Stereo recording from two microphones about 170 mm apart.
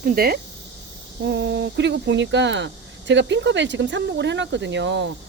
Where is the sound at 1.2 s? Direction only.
85° right.